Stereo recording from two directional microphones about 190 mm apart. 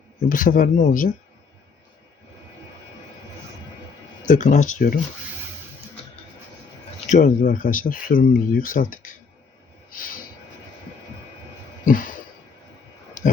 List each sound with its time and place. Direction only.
0.3 s speech: 45° left (ahead or behind)
4.3 s speech: 40° left (ahead or behind)
7.1 s speech: 40° left (ahead or behind)
11.9 s speech: 45° left (ahead or behind)